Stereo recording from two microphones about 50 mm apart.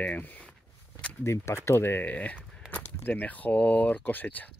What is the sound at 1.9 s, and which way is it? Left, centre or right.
Speech, left.